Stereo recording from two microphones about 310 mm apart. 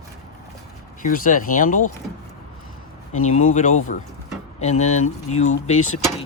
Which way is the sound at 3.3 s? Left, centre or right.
Left.